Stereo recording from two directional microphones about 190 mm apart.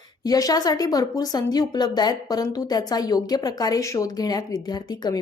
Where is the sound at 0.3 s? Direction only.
20° left (ahead or behind).